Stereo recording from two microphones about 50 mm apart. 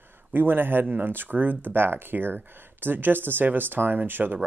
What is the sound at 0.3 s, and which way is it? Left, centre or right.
Speech, right.